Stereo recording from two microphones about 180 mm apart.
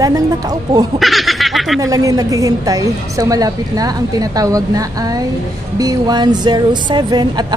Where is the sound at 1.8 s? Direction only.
20° right (ahead or behind).